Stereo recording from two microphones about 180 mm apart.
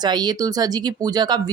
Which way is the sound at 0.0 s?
25° right (ahead or behind).